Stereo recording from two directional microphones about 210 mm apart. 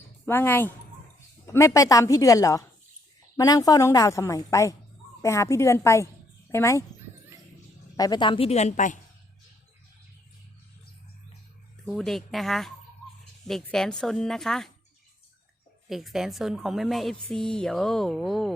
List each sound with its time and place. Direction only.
0.3 s a woman's voice: 10° left (ahead or behind)
7.9 s a woman's voice: 20° left (ahead or behind); by 9.0 s 35° left (ahead or behind)
11.9 s speech: centre (ahead or behind)
15.9 s speech: centre (ahead or behind)